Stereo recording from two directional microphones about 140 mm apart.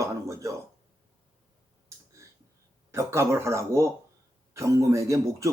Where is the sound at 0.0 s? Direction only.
20° right (ahead or behind).